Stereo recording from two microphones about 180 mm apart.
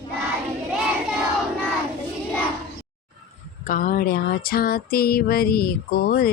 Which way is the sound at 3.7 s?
50° left (ahead or behind).